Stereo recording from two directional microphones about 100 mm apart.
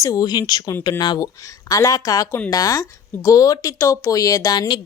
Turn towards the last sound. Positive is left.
turn(degrees=35)  # may be behind; listen again after turning